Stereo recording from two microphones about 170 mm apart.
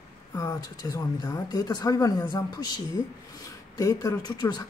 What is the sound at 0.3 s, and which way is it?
Speech, 20° left (ahead or behind).